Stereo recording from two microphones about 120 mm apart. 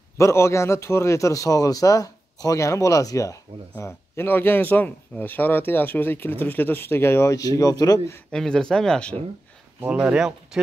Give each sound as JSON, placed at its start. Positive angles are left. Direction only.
{"t": 0.2, "sound": "a man's voice", "side_deg": 25}
{"t": 3.7, "sound": "speech", "side_deg": 15}
{"t": 8.3, "sound": "speech", "side_deg": 5}
{"t": 9.8, "sound": "speech", "side_deg": -10}